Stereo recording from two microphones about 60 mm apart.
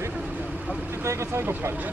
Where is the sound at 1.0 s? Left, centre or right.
Right.